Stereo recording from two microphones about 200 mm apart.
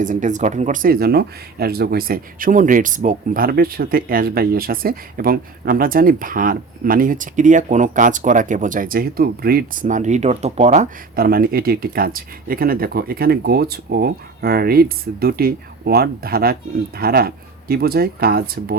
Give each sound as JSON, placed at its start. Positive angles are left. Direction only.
{"t": 0.0, "sound": "speech", "side_deg": -40}